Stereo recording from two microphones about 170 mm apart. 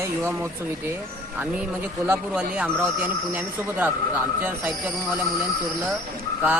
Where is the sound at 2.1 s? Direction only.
5° right (ahead or behind).